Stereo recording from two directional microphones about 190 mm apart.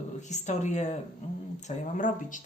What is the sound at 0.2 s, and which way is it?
Speech, 40° left (ahead or behind).